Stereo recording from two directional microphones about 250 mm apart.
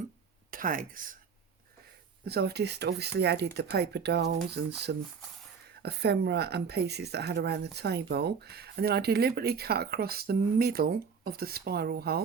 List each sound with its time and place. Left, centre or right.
0.5 s speech: right
2.2 s speech: right